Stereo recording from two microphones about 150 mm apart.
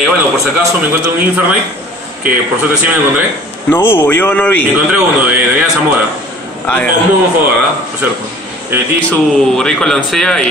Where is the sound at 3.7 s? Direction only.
15° left (ahead or behind).